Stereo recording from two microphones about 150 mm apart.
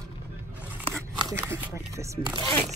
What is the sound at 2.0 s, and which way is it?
Speech, 30° right (ahead or behind).